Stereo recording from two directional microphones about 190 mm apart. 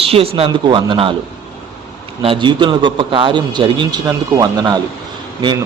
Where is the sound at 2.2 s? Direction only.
25° right (ahead or behind).